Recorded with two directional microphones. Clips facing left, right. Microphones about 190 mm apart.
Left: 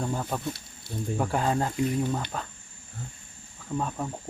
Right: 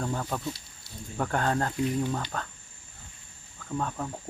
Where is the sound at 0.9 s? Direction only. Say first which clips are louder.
Left 11 dB; 55° left (ahead or behind).